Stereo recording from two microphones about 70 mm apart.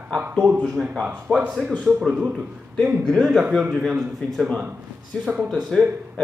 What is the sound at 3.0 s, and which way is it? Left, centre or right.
A man's voice, centre.